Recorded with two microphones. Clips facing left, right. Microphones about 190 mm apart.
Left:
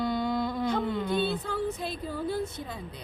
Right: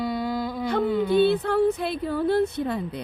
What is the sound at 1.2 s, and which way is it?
Speech, 65° right (ahead or behind).